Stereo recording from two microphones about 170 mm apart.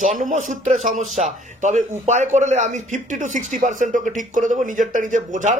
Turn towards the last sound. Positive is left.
turn(degrees=-50)  # may be behind; listen again after turning